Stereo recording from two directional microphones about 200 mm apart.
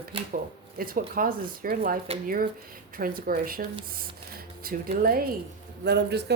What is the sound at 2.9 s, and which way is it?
Speech, 45° right (ahead or behind).